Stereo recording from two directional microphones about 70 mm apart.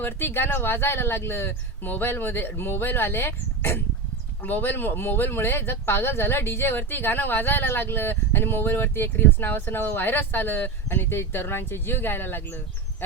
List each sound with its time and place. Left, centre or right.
0.0 s speech: left
13.0 s goose: left